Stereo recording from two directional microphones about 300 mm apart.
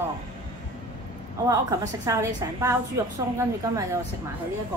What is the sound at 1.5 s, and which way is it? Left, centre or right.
A woman's voice, centre.